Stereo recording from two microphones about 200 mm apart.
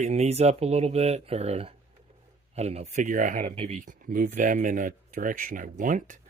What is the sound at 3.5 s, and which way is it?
Speech, 30° right (ahead or behind).